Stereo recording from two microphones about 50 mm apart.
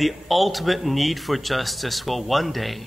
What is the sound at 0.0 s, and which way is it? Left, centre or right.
Speech, centre.